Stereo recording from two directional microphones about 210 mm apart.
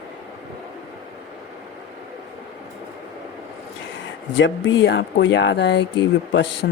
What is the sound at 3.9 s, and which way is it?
Speech, 60° left (ahead or behind).